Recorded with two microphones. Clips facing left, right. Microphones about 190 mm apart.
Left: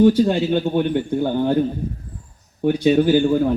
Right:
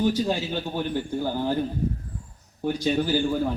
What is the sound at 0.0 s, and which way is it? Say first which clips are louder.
A man's voice: left 9 dB; 65° left (ahead or behind).